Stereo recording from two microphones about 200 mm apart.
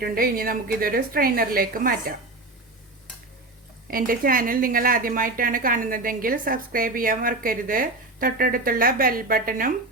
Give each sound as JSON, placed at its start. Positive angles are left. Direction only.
{"t": 0.0, "sound": "a woman's voice", "side_deg": -50}
{"t": 3.8, "sound": "a woman's voice", "side_deg": -45}